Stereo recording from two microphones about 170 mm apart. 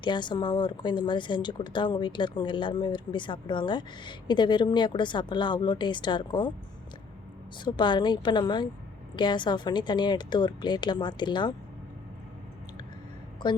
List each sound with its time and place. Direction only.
0.0 s speech: 25° left (ahead or behind)
7.6 s speech: 30° left (ahead or behind)
13.4 s speech: 25° left (ahead or behind)